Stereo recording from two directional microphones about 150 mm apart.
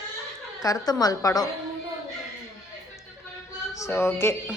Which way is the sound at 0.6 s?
25° left (ahead or behind).